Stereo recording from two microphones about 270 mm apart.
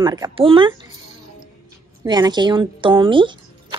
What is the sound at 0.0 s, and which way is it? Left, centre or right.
Speech, centre.